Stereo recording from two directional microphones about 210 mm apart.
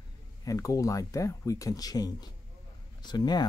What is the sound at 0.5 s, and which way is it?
Speech, 15° left (ahead or behind).